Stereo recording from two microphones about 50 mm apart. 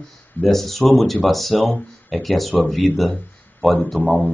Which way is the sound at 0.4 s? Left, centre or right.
Centre.